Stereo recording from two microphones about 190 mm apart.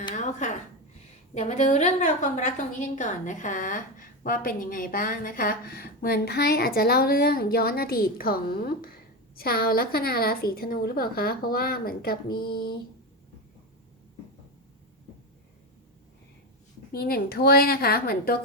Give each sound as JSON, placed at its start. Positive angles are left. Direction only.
{"t": 0.1, "sound": "a sound", "side_deg": 40}
{"t": 1.3, "sound": "a woman's voice", "side_deg": 35}
{"t": 16.9, "sound": "a woman's voice", "side_deg": 55}